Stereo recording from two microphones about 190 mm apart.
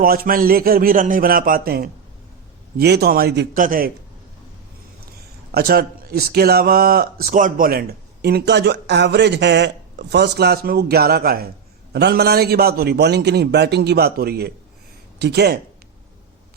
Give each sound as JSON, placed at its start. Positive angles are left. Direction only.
{"t": 0.0, "sound": "a man's voice", "side_deg": -50}
{"t": 5.5, "sound": "a man's voice", "side_deg": -55}